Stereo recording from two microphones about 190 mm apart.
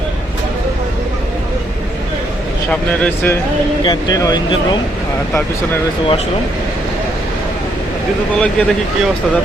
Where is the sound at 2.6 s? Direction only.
5° left (ahead or behind).